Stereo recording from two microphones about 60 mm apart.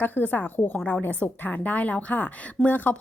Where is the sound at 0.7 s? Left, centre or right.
Centre.